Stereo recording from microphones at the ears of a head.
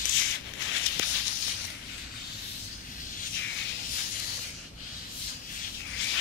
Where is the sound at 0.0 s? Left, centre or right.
Left.